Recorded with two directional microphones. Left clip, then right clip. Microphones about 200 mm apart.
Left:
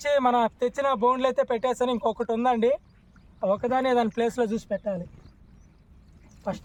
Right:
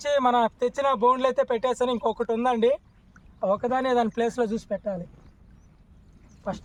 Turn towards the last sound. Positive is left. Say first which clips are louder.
# left 1 dB
turn(degrees=5)  # may be behind; listen again after turning